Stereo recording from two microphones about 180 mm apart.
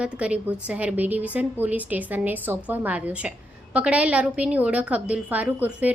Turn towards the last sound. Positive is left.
turn(degrees=-10)  # may be behind; listen again after turning